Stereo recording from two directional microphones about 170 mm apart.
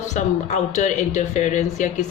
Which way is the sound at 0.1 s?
45° left (ahead or behind).